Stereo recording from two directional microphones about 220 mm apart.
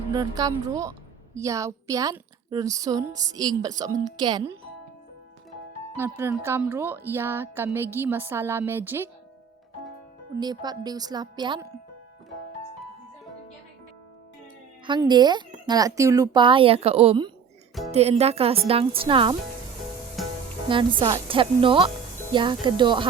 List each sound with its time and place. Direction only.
0.1 s a woman's voice: 15° right (ahead or behind)
6.0 s a woman's voice: 10° right (ahead or behind)
10.4 s speech: 20° right (ahead or behind)
14.8 s speech: 20° right (ahead or behind)
20.7 s speech: 20° right (ahead or behind)